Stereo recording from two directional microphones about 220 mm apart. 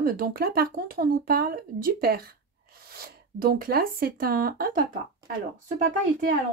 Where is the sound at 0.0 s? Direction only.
40° right (ahead or behind).